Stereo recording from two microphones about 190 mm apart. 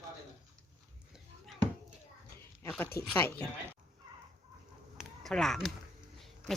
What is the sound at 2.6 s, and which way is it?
Speech, 10° left (ahead or behind).